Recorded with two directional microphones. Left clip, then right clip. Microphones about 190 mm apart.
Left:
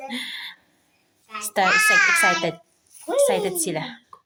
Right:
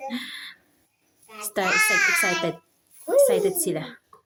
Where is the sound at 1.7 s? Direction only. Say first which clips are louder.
Left 3 dB; centre (ahead or behind).